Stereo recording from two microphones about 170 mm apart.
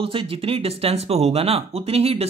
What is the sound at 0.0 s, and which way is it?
Speech, 30° right (ahead or behind).